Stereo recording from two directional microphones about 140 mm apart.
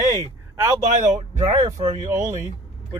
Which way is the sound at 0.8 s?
55° right (ahead or behind).